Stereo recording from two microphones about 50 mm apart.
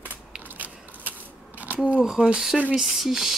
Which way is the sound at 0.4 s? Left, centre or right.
Right.